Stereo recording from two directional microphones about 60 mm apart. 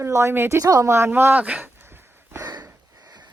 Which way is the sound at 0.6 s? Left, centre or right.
Right.